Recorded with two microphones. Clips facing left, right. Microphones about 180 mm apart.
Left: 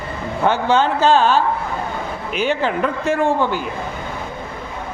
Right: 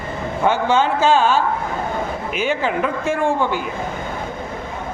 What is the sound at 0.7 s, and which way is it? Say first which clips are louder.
Chant: left 2 dB; 10° right (ahead or behind).